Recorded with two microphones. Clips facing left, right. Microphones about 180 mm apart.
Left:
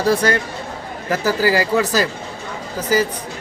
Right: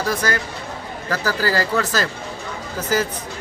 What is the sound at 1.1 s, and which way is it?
Speech, 15° left (ahead or behind).